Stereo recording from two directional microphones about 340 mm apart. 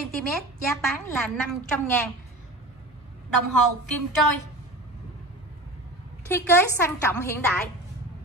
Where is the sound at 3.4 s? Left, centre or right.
Right.